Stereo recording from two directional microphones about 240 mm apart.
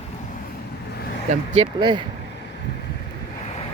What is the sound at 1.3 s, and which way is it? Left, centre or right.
Speech, right.